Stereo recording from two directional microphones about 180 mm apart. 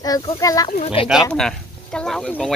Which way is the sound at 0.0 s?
20° left (ahead or behind).